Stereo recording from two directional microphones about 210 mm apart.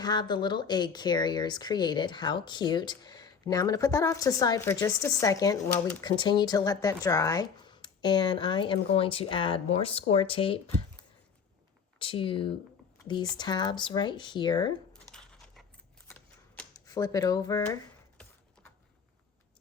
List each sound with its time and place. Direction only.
0.0 s speech: 20° left (ahead or behind)
11.9 s speech: 25° left (ahead or behind)
15.1 s a sound: 5° left (ahead or behind)
16.8 s speech: 15° left (ahead or behind)